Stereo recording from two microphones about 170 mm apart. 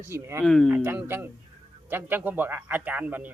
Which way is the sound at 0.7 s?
10° right (ahead or behind).